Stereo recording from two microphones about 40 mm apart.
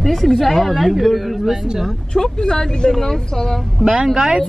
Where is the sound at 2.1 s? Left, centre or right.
Centre.